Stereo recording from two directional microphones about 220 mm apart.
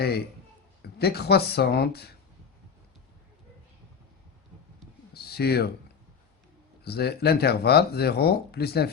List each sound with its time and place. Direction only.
0.8 s speech: 45° left (ahead or behind)
5.1 s a sound: 45° left (ahead or behind)
6.8 s speech: 45° left (ahead or behind)